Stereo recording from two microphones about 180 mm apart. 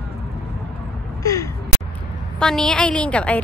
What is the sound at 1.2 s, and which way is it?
Gasp, 20° left (ahead or behind).